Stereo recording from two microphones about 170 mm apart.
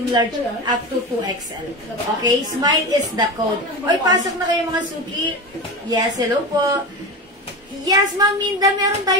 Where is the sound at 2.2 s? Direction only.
25° right (ahead or behind).